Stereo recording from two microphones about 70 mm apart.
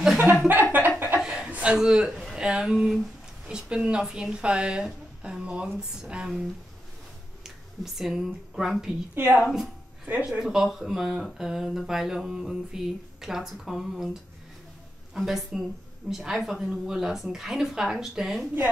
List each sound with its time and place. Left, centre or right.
0.5 s a sound: right
1.2 s chuckle: centre
1.5 s a man's voice: centre
7.4 s speech: centre
9.1 s a woman's voice: right
9.4 s speech: centre
15.1 s speech: centre